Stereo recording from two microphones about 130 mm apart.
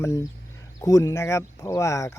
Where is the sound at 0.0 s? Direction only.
25° left (ahead or behind).